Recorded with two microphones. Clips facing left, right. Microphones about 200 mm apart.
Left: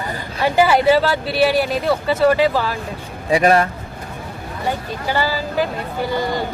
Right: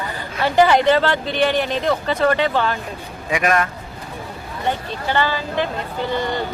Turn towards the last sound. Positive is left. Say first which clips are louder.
# left 1 dB
turn(degrees=10)  # may be behind; listen again after turning